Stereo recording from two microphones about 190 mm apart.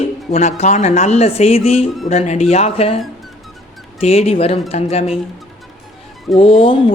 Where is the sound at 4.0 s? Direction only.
35° left (ahead or behind).